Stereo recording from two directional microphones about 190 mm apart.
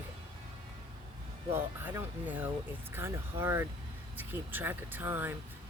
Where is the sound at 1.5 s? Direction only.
10° right (ahead or behind).